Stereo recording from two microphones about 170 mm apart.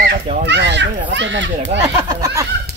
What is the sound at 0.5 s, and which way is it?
Speech, 90° right.